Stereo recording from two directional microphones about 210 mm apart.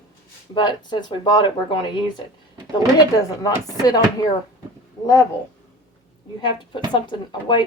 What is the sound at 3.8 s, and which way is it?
A woman's voice, 15° left (ahead or behind).